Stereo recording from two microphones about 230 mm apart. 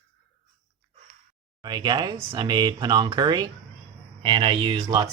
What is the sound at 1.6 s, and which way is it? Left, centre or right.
Speech, centre.